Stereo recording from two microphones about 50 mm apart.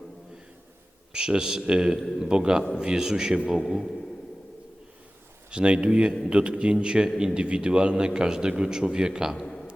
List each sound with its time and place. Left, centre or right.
1.1 s a man's voice: centre
3.7 s a man's voice: centre
5.5 s a man's voice: centre